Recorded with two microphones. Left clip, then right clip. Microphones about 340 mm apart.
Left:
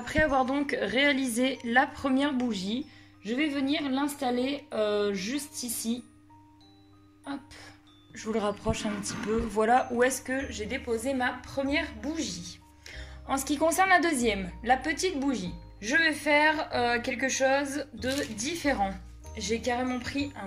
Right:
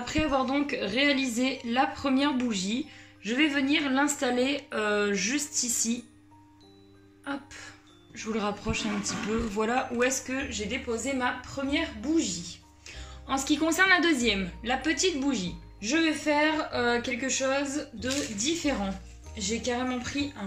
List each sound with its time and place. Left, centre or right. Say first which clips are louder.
0.0 s a woman's voice: left 2 dB; left
7.2 s a woman's voice: right 3 dB; centre